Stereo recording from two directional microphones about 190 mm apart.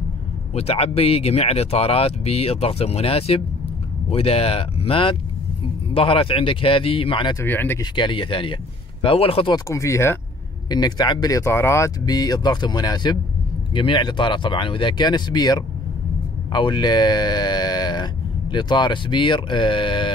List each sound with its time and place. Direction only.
0.6 s speech: 30° left (ahead or behind)
7.4 s speech: 10° left (ahead or behind)
7.8 s speech: 25° left (ahead or behind)
9.7 s speech: 15° left (ahead or behind)